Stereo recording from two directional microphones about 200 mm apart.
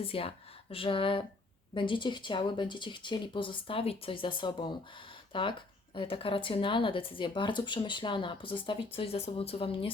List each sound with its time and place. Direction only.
0.0 s speech: 30° left (ahead or behind)